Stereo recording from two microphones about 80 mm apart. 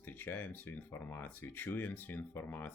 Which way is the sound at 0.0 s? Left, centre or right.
Left.